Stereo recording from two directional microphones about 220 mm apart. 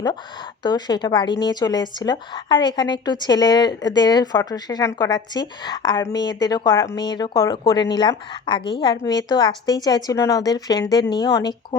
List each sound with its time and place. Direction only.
0.6 s a woman's voice: 20° left (ahead or behind)